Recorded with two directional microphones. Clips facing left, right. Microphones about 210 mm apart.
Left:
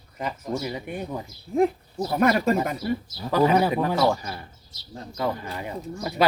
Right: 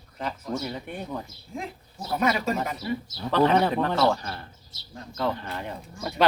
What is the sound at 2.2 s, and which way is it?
Speech, 55° left (ahead or behind).